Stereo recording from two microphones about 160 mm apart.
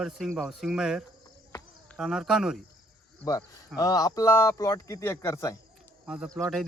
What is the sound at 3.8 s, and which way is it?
Speech, 25° left (ahead or behind).